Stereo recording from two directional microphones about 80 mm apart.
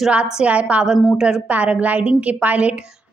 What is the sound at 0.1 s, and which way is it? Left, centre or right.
A woman's voice, centre.